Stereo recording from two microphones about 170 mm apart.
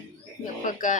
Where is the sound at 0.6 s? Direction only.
50° left (ahead or behind).